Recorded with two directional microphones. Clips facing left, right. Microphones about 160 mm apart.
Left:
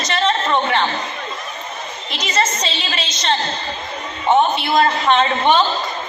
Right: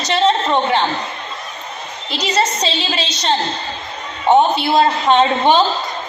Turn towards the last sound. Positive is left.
turn(degrees=-35)  # may be behind; listen again after turning